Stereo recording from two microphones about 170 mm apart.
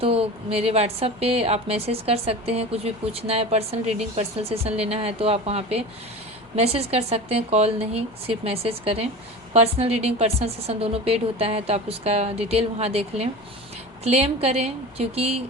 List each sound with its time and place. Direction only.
0.0 s a woman's voice: 35° right (ahead or behind)